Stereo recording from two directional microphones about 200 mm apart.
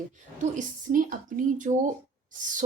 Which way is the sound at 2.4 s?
40° right (ahead or behind).